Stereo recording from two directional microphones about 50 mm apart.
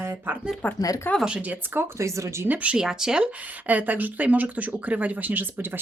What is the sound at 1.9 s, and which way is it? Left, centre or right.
Speech, right.